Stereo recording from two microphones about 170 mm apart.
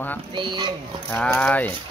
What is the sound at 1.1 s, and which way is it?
Speech, 10° left (ahead or behind).